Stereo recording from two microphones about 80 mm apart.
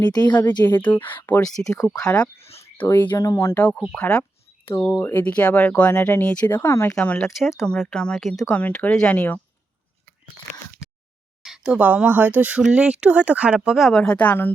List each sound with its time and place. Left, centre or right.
0.0 s a woman's voice: left
0.3 s speech: left
1.6 s speech: left
1.9 s speech: centre
2.7 s speech: left
3.2 s speech: left
3.5 s speech: left
6.2 s speech: centre
6.5 s speech: left
7.3 s speech: centre
7.8 s speech: centre
8.4 s speech: centre
11.4 s speech: centre
14.0 s speech: centre